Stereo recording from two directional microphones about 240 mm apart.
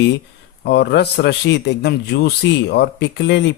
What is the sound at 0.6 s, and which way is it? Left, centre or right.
A man's voice, left.